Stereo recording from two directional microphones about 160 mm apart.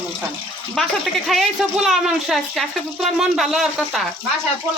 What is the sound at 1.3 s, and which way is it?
Speech, centre (ahead or behind).